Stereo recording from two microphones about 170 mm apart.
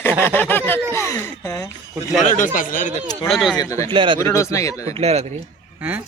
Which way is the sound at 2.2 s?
50° left (ahead or behind).